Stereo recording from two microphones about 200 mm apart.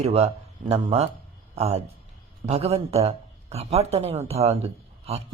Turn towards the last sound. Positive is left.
turn(degrees=-30)  # may be behind; listen again after turning